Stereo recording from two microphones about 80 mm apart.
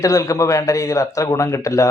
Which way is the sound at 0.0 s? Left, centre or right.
Left.